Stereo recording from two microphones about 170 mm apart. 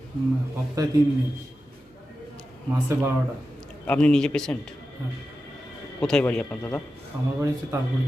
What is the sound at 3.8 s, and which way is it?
Speech, 5° left (ahead or behind).